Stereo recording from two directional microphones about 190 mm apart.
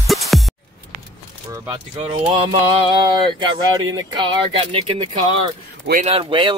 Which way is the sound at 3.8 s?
20° right (ahead or behind).